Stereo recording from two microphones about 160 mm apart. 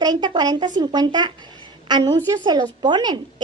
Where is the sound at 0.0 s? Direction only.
25° right (ahead or behind).